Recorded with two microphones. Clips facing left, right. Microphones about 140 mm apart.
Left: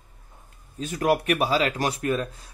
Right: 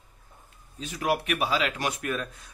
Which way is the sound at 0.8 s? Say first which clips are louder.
Left 5 dB; 45° left (ahead or behind).